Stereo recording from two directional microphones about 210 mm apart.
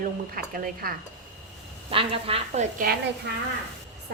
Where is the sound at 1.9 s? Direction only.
25° right (ahead or behind).